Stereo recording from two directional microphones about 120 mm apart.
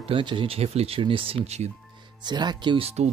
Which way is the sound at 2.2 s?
35° right (ahead or behind).